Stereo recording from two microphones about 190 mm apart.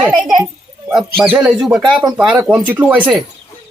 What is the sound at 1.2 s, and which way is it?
A woman's voice, 5° right (ahead or behind).